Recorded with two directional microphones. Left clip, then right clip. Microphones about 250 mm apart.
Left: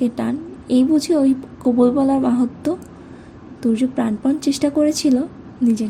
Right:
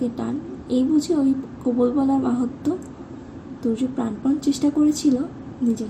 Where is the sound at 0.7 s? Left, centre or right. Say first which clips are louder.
Left 4 dB; left.